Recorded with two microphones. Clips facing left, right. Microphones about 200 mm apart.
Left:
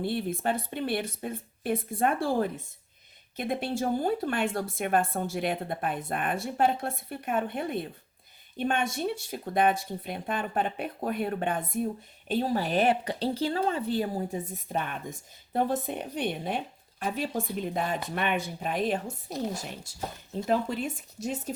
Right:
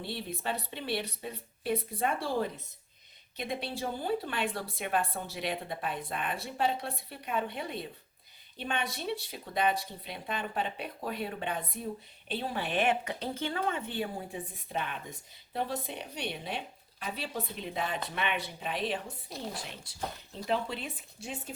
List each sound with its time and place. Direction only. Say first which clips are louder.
0.0 s a woman's voice: left 8 dB; 50° left (ahead or behind)
20.5 s a woman's voice: left 5 dB; 45° left (ahead or behind)